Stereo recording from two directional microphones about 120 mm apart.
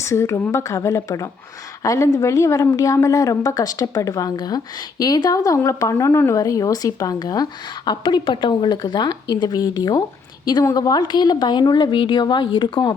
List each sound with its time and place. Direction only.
0.0 s a woman's voice: 25° left (ahead or behind); by 12.9 s 40° left (ahead or behind)